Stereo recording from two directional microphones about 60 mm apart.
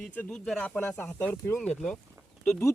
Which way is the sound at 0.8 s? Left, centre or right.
Left.